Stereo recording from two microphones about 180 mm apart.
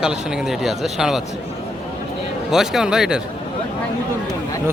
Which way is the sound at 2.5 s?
5° right (ahead or behind).